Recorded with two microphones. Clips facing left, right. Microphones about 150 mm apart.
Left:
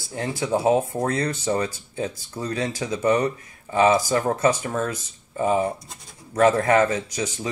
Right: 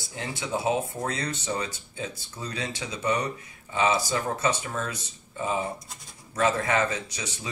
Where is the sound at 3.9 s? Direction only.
50° left (ahead or behind).